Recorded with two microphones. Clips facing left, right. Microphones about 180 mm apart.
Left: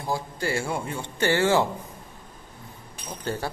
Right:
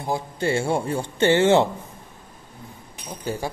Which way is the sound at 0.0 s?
25° right (ahead or behind).